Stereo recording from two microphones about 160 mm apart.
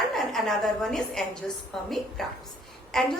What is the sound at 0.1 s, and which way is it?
A woman's voice, centre (ahead or behind).